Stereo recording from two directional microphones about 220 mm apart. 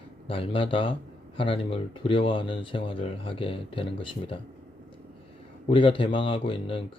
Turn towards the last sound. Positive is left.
turn(degrees=25)  # may be behind; listen again after turning